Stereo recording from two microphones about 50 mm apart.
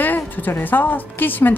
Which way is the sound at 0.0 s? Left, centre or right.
Left.